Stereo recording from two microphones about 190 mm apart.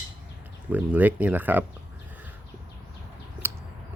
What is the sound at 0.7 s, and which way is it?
Speech, 10° right (ahead or behind).